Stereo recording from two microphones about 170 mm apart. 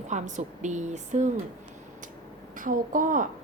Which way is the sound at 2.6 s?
50° right (ahead or behind).